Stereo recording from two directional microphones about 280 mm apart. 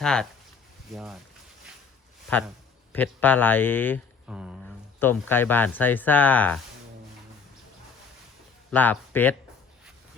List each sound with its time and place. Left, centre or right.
0.0 s speech: centre
2.3 s speech: centre
4.4 s speech: centre
4.9 s speech: centre
8.7 s speech: centre